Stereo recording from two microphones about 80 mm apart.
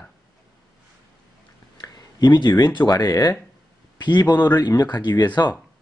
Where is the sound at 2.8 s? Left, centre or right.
Left.